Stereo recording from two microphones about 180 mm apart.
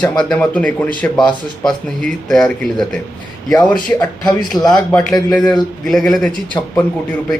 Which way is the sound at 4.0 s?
20° left (ahead or behind).